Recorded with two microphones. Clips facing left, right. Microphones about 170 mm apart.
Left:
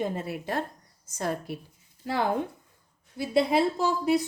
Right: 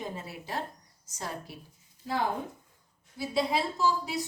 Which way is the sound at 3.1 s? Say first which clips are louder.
Left 6 dB; 60° left (ahead or behind).